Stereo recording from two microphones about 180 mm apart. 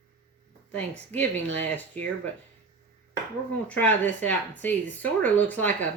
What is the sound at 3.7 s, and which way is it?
Speech, 10° left (ahead or behind).